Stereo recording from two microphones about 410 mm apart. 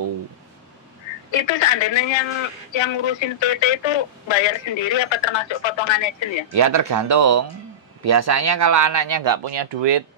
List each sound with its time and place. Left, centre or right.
1.3 s speech: left
6.5 s speech: right
9.6 s speech: right